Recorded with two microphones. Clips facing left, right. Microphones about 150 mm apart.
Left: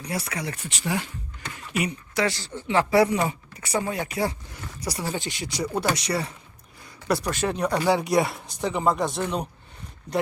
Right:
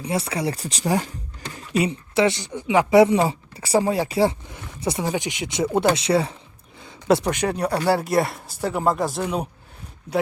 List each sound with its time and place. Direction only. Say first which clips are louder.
0.0 s speech: right 6 dB; 25° right (ahead or behind); by 9.5 s 5° right (ahead or behind)